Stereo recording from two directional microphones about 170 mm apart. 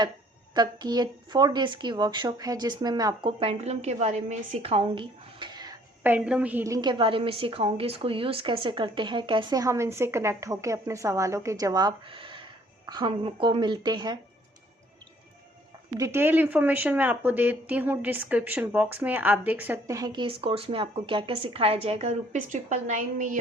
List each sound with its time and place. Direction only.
0.5 s a woman's voice: 25° right (ahead or behind)
3.6 s speech: 40° right (ahead or behind); by 5.7 s 25° right (ahead or behind)
6.0 s a woman's voice: 10° right (ahead or behind); by 14.2 s 25° right (ahead or behind)
16.0 s speech: 15° right (ahead or behind)
20.0 s a woman's voice: 25° right (ahead or behind); by 23.4 s 50° right (ahead or behind)